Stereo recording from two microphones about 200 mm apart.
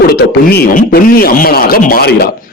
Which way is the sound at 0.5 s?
50° left (ahead or behind).